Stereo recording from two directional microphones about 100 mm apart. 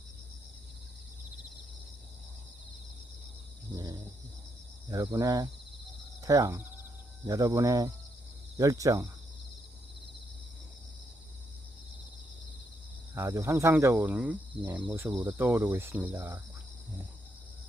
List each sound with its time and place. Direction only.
4.9 s speech: 35° right (ahead or behind)
13.1 s speech: 30° right (ahead or behind)
14.0 s speech: 15° right (ahead or behind)